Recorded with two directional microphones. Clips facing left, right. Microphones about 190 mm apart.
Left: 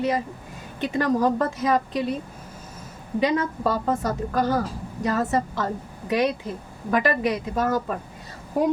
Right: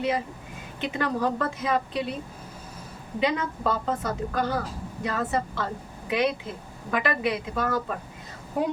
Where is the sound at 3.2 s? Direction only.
40° left (ahead or behind).